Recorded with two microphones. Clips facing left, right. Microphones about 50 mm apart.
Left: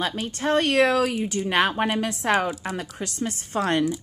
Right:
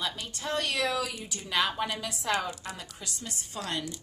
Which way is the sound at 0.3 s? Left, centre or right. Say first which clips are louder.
Left 11 dB; left.